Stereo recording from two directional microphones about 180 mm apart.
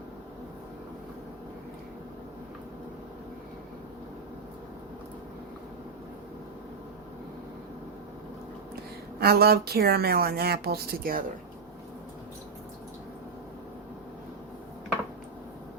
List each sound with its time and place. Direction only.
9.2 s speech: 60° right (ahead or behind)